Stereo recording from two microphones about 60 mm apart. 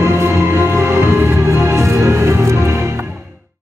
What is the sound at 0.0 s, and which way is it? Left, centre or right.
Music, right.